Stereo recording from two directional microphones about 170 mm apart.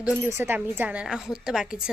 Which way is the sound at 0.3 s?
10° right (ahead or behind).